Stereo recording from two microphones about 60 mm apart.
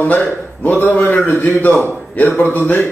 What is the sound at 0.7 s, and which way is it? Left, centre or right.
A man's voice, left.